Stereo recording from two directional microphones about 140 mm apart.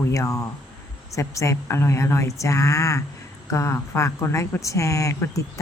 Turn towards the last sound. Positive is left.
turn(degrees=20)  # may be behind; listen again after turning